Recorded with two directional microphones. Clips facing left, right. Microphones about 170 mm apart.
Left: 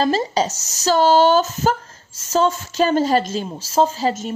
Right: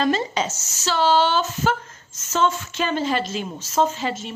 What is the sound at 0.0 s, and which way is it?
Speech, 35° left (ahead or behind).